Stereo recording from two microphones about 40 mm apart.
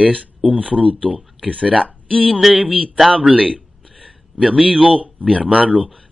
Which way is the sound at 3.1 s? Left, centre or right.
Right.